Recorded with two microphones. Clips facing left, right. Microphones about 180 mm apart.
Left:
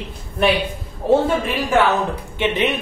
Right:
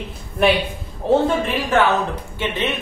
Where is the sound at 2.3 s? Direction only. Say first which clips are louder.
Left 4 dB; 20° left (ahead or behind).